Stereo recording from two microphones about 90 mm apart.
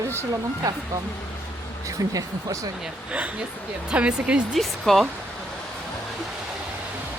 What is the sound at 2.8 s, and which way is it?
Speech, 15° right (ahead or behind).